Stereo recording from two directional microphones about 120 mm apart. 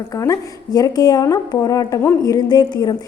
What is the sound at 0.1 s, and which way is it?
A woman's voice, 30° left (ahead or behind).